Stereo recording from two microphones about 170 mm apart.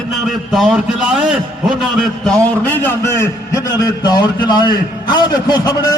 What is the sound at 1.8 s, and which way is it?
A man's voice, centre (ahead or behind).